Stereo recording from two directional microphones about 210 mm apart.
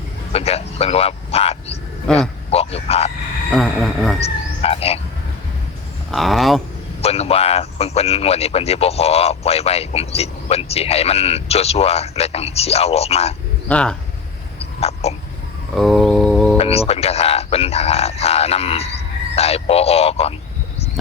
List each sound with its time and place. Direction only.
0.3 s speech: 30° left (ahead or behind)
2.1 s speech: 5° left (ahead or behind)
2.5 s a sound: 30° left (ahead or behind)
3.5 s speech: centre (ahead or behind)
4.2 s frog: 30° left (ahead or behind)
6.1 s speech: centre (ahead or behind)
7.0 s speech: 30° left (ahead or behind)
13.7 s speech: 5° left (ahead or behind)
14.8 s throat clearing: 30° left (ahead or behind)
15.7 s a sound: centre (ahead or behind)
16.6 s speech: 30° left (ahead or behind)